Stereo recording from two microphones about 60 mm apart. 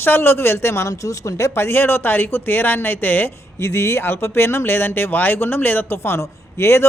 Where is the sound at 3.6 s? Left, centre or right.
Left.